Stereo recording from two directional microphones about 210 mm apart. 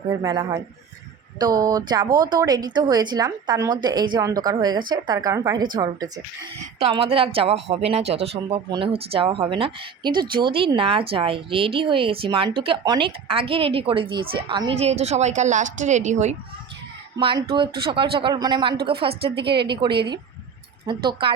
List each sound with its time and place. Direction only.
0.1 s speech: 20° right (ahead or behind); by 16.3 s 35° right (ahead or behind)
17.2 s speech: 25° right (ahead or behind)
19.2 s a woman's voice: 50° right (ahead or behind)
20.8 s speech: 20° right (ahead or behind)